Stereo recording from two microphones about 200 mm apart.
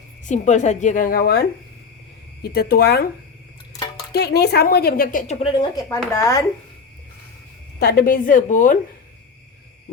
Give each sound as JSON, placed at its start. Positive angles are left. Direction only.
{"t": 0.3, "sound": "a woman's voice", "side_deg": 35}
{"t": 4.1, "sound": "a woman's voice", "side_deg": 55}
{"t": 5.4, "sound": "a woman's voice", "side_deg": 20}
{"t": 7.8, "sound": "a woman's voice", "side_deg": 50}